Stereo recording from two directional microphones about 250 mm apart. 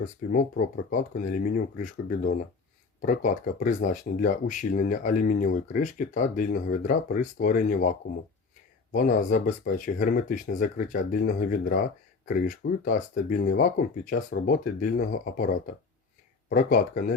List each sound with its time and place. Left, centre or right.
0.3 s speech: left